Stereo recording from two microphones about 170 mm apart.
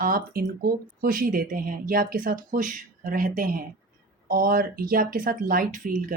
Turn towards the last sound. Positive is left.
turn(degrees=-50)  # may be behind; listen again after turning